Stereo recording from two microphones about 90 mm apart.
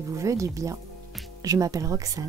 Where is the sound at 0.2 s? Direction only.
35° right (ahead or behind).